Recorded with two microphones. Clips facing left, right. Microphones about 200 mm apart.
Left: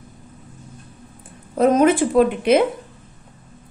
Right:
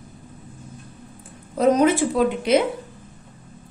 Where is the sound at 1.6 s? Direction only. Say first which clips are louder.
Left 2 dB; 55° left (ahead or behind).